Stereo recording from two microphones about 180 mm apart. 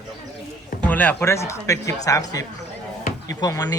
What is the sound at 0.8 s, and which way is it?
Speech, 10° left (ahead or behind).